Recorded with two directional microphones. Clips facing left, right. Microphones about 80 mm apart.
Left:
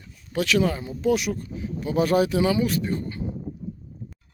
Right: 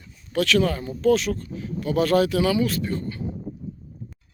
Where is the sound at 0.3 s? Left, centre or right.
Centre.